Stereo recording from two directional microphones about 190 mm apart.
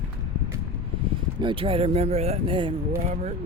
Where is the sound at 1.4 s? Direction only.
25° right (ahead or behind).